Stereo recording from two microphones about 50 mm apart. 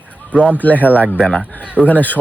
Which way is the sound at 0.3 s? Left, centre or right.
Right.